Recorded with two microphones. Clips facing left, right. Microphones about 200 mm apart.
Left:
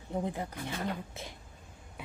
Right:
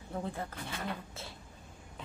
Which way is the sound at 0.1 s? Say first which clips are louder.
Left 4 dB; 15° left (ahead or behind).